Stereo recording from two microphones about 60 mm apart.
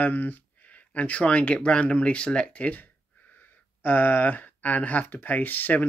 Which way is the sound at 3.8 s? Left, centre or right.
Left.